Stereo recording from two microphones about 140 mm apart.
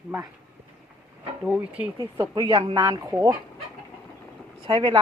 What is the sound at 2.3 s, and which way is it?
Speech, 30° right (ahead or behind).